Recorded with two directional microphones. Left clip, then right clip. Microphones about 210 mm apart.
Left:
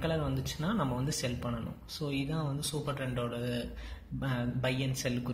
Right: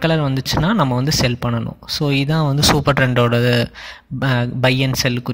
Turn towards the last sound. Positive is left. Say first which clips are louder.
# right 16 dB
turn(degrees=-40)  # may be behind; listen again after turning